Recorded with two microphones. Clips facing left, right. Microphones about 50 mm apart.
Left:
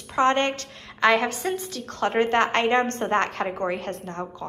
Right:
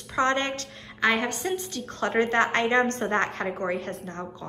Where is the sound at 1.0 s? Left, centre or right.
Left.